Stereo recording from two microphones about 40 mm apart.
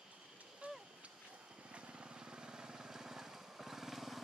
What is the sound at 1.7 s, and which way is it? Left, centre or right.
Vehicle, right.